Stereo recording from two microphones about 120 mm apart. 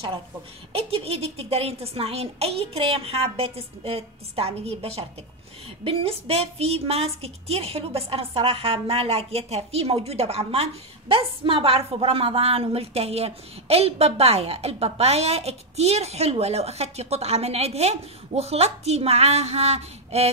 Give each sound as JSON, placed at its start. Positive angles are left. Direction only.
{"t": 0.7, "sound": "a woman's voice", "side_deg": -55}